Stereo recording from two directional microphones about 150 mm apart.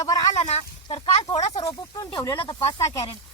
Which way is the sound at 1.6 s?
25° left (ahead or behind).